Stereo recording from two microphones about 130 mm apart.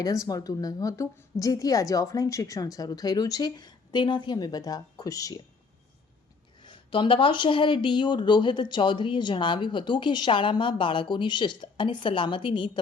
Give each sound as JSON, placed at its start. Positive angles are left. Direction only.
{"t": 0.0, "sound": "a woman's voice", "side_deg": 25}
{"t": 6.6, "sound": "speech", "side_deg": 35}